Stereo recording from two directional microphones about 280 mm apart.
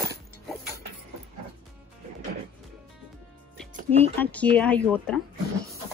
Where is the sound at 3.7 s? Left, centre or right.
Right.